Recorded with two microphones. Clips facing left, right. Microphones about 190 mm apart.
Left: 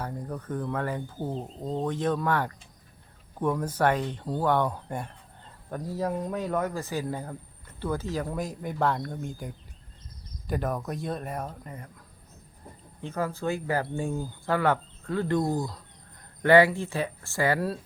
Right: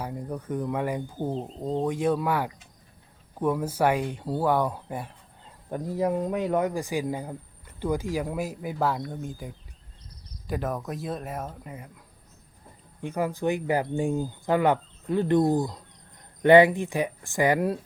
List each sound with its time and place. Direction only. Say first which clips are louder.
0.0 s speech: right 2 dB; 10° right (ahead or behind)
5.7 s speech: right 4 dB; 15° right (ahead or behind)
13.0 s speech: right 3 dB; 15° right (ahead or behind)